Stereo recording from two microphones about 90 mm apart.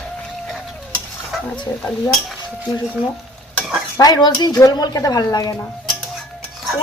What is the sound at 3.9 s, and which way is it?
Speech, 45° left (ahead or behind).